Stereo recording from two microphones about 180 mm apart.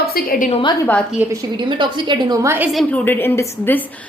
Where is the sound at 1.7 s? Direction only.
25° right (ahead or behind).